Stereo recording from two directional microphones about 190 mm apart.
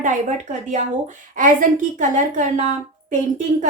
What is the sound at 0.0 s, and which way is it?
A woman's voice, 40° right (ahead or behind).